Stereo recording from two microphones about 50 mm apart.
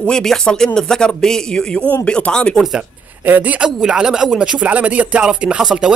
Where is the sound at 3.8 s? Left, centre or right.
Centre.